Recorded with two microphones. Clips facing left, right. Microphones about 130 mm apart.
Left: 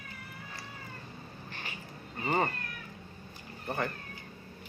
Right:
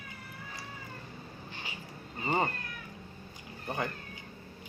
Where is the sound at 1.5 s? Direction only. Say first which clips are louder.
Left 1 dB; 20° right (ahead or behind).